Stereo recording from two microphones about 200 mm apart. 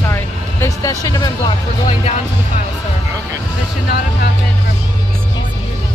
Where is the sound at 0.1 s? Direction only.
15° left (ahead or behind).